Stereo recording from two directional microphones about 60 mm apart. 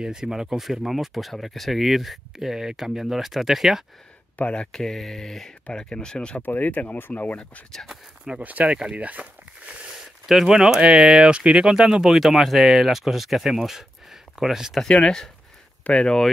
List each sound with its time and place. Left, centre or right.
0.0 s speech: centre
4.4 s speech: centre
4.7 s speech: centre
6.4 s speech: left
7.7 s speech: centre
8.4 s speech: right
9.9 s a sound: centre
10.9 s speech: centre
14.9 s speech: centre